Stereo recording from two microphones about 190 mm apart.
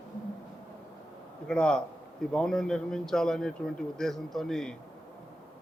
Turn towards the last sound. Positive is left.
turn(degrees=5)  # may be behind; listen again after turning